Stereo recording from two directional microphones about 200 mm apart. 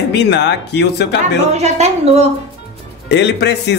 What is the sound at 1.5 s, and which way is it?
Speech, 35° right (ahead or behind).